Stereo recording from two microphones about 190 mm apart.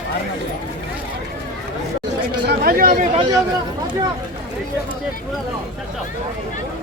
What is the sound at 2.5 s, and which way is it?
Chatter, 50° right (ahead or behind).